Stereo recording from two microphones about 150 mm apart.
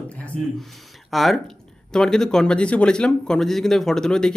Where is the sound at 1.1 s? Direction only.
Centre (ahead or behind).